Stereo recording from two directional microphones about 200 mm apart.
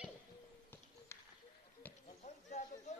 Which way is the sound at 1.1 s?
15° left (ahead or behind).